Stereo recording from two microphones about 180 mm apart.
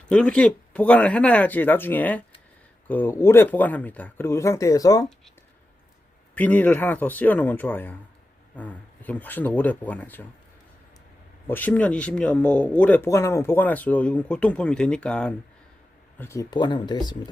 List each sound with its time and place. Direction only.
0.1 s speech: 5° left (ahead or behind)
6.3 s speech: 10° left (ahead or behind)
11.4 s speech: 10° left (ahead or behind)